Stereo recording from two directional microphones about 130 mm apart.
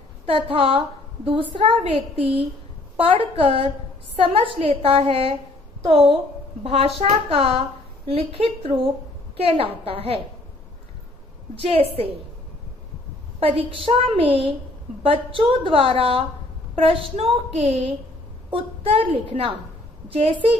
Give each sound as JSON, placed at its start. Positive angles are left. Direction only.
{"t": 0.3, "sound": "a woman's voice", "side_deg": -45}
{"t": 3.1, "sound": "a woman's voice", "side_deg": -45}
{"t": 11.6, "sound": "a woman's voice", "side_deg": -50}
{"t": 13.4, "sound": "a woman's voice", "side_deg": -45}